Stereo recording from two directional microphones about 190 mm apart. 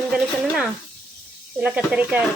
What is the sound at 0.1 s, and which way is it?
Speech, 5° right (ahead or behind).